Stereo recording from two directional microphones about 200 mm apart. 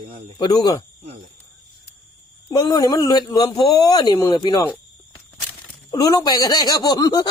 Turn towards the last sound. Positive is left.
turn(degrees=20)  # may be behind; listen again after turning